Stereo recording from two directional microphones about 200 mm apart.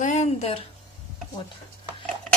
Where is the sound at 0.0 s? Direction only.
35° left (ahead or behind).